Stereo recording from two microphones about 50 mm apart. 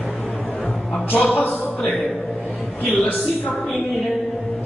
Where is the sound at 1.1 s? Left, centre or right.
Left.